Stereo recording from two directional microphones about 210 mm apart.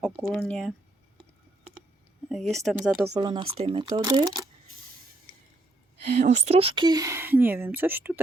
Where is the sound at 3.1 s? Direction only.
20° right (ahead or behind).